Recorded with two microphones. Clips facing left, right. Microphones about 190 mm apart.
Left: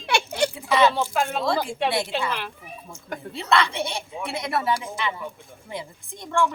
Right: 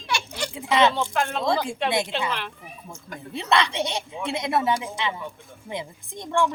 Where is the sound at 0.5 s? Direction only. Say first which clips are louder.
Right 1 dB; 20° right (ahead or behind).